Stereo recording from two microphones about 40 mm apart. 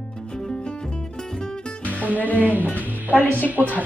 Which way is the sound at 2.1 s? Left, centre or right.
Left.